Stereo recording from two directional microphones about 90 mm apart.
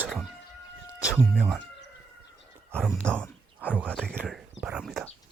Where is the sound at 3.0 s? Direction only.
15° left (ahead or behind).